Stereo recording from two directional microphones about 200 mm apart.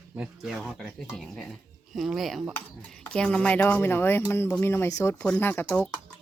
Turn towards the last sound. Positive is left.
turn(degrees=10)  # may be behind; listen again after turning